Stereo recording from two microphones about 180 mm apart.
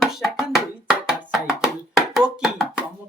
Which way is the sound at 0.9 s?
5° right (ahead or behind).